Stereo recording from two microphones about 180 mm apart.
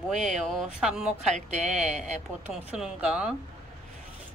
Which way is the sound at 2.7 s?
5° right (ahead or behind).